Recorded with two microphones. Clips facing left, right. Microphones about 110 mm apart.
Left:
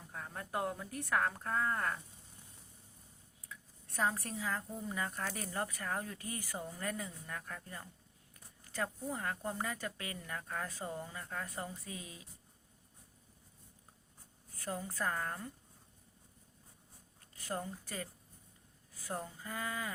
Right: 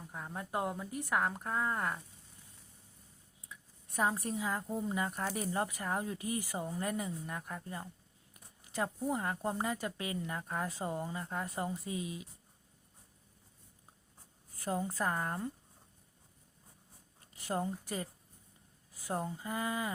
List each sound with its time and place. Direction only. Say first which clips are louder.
0.1 s speech: right 2 dB; 15° right (ahead or behind)
3.5 s speech: right 3 dB; 15° right (ahead or behind)
14.6 s speech: right 4 dB; 25° right (ahead or behind)
17.3 s speech: right 5 dB; 25° right (ahead or behind)